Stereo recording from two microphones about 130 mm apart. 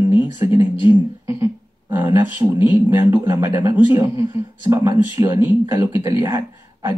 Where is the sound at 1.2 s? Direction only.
20° right (ahead or behind).